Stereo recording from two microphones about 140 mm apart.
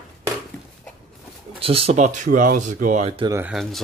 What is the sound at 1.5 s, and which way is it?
Speech, 40° right (ahead or behind).